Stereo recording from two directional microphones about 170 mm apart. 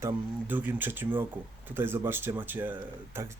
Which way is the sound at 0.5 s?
10° right (ahead or behind).